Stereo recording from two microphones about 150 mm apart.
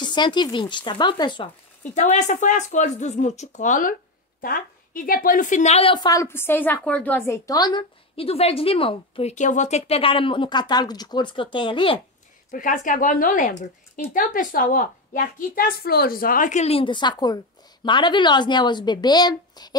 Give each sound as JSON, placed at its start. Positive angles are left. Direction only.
{"t": 0.0, "sound": "speech", "side_deg": 30}
{"t": 2.0, "sound": "speech", "side_deg": 50}
{"t": 4.4, "sound": "a woman's voice", "side_deg": 70}
{"t": 8.2, "sound": "speech", "side_deg": 40}
{"t": 9.3, "sound": "speech", "side_deg": 55}
{"t": 12.4, "sound": "a woman's voice", "side_deg": 60}